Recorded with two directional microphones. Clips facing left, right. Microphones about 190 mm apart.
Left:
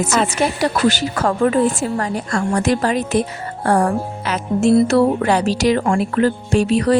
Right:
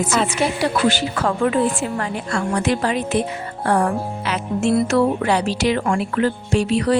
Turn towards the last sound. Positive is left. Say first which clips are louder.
# left 3 dB
turn(degrees=45)  # may be behind; listen again after turning